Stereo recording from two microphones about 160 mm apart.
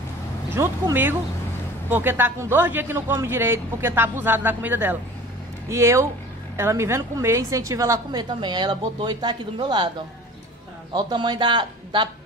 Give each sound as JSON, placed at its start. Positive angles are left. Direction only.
{"t": 0.6, "sound": "a man's voice", "side_deg": -15}
{"t": 10.9, "sound": "a woman's voice", "side_deg": -25}